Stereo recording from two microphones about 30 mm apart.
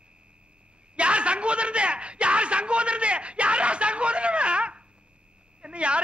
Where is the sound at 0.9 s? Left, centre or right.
Right.